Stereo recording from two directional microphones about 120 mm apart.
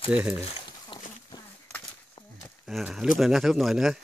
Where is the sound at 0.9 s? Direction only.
45° left (ahead or behind).